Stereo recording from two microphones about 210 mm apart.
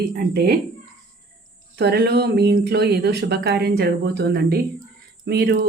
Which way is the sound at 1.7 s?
50° right (ahead or behind).